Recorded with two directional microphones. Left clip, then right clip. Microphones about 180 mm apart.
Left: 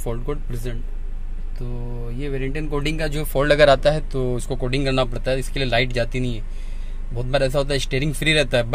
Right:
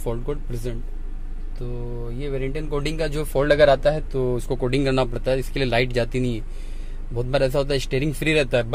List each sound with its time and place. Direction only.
0.0 s speech: 5° right (ahead or behind)
4.6 s speech: 15° right (ahead or behind); by 8.7 s centre (ahead or behind)